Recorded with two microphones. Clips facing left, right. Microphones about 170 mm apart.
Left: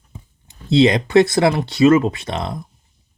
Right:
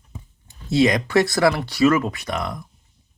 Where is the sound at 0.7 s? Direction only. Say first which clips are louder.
Left 4 dB; 25° left (ahead or behind).